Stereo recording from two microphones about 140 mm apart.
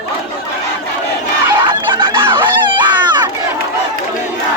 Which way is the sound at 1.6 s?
35° right (ahead or behind).